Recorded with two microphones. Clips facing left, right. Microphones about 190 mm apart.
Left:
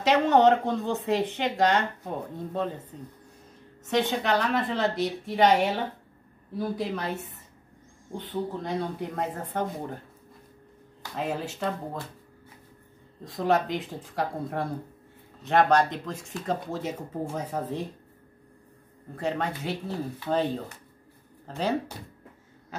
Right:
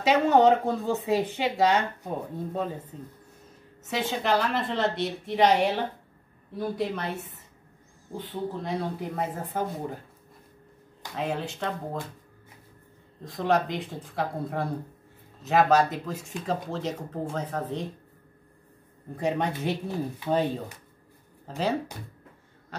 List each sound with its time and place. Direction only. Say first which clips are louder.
0.0 s a woman's voice: even; 5° right (ahead or behind)
11.1 s a woman's voice: even; 5° left (ahead or behind)
13.2 s a woman's voice: even; centre (ahead or behind)
16.7 s speech: even; 10° left (ahead or behind)
19.1 s a woman's voice: right 2 dB; 15° right (ahead or behind)